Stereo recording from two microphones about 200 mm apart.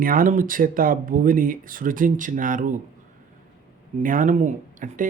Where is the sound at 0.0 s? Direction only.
45° right (ahead or behind).